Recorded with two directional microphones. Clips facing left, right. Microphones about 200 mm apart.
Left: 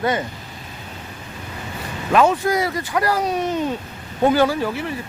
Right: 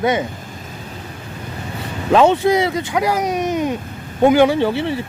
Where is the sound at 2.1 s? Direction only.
25° right (ahead or behind).